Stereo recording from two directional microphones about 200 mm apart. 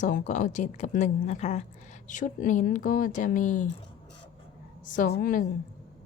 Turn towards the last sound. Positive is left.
turn(degrees=45)  # may be behind; listen again after turning